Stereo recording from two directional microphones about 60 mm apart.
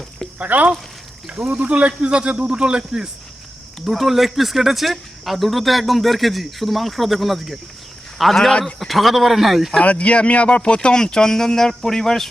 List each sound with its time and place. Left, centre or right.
0.3 s speech: right
3.8 s speech: centre
9.8 s speech: left